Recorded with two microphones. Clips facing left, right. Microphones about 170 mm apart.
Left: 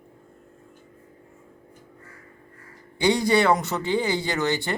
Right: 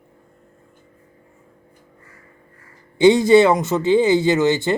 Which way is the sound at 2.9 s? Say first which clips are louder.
Right 9 dB; 20° right (ahead or behind).